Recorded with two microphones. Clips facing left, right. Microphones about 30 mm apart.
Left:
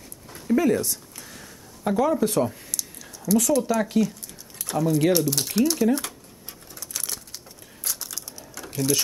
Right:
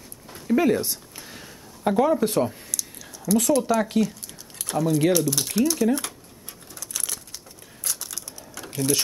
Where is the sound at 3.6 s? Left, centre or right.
Centre.